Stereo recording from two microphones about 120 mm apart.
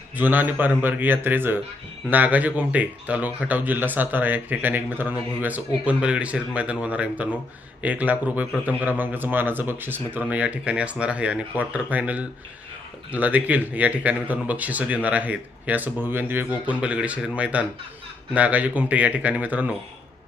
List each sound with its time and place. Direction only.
0.2 s speech: 15° right (ahead or behind)